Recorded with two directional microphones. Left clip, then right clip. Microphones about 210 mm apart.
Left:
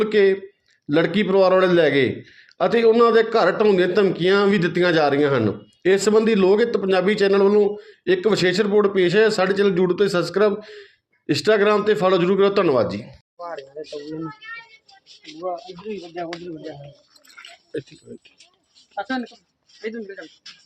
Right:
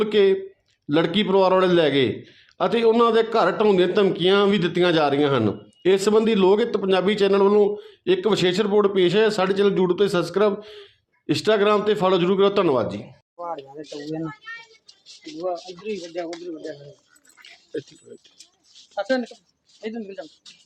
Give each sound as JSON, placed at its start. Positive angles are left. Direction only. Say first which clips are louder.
{"t": 0.0, "sound": "a man's voice", "louder": "left 1 dB", "side_deg": -10}
{"t": 13.3, "sound": "a sound", "louder": "right 2 dB", "side_deg": -30}
{"t": 17.7, "sound": "speech", "louder": "left 1 dB", "side_deg": 0}
{"t": 18.9, "sound": "speech", "louder": "right 3 dB", "side_deg": -35}
{"t": 19.8, "sound": "speech", "louder": "left 1 dB", "side_deg": -45}